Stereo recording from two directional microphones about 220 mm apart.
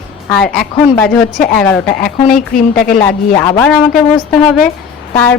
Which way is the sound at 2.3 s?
40° left (ahead or behind).